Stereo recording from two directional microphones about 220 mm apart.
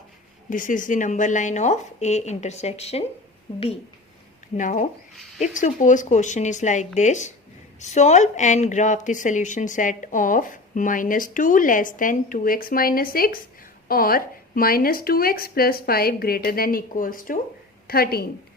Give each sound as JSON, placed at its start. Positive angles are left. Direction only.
{"t": 0.5, "sound": "a woman's voice", "side_deg": 35}
{"t": 4.5, "sound": "a woman's voice", "side_deg": 35}